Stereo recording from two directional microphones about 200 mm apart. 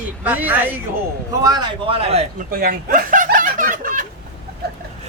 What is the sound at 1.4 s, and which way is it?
Speech, 25° right (ahead or behind).